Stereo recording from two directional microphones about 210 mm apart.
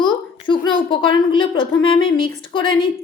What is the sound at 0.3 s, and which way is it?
A woman's voice, 25° left (ahead or behind).